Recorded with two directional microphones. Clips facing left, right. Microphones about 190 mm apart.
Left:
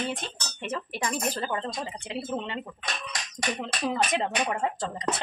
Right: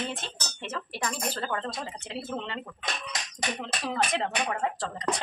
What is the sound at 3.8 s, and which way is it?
Speech, 15° left (ahead or behind).